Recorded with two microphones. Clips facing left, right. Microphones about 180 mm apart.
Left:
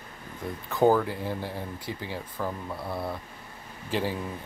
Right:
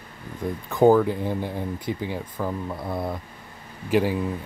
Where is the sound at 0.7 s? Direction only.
15° right (ahead or behind).